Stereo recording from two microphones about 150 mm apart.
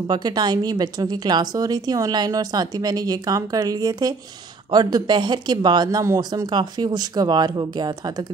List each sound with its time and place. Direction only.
0.0 s speech: 30° right (ahead or behind)